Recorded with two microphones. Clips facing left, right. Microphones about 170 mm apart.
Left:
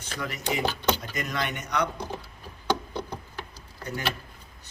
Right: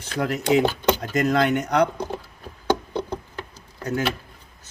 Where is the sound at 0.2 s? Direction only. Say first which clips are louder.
Right 10 dB; 75° right (ahead or behind).